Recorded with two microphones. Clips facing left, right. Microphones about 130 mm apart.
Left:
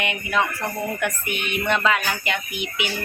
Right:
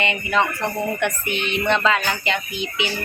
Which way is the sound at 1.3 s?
25° right (ahead or behind).